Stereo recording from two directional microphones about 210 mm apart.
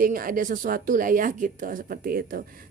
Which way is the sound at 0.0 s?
40° right (ahead or behind).